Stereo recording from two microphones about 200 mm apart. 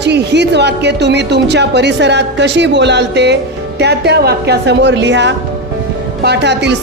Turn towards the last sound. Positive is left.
turn(degrees=-60)  # may be behind; listen again after turning